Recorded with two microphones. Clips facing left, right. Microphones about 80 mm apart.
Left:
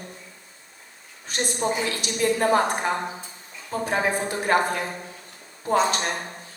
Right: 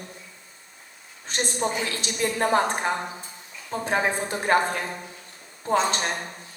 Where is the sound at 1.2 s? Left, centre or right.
Right.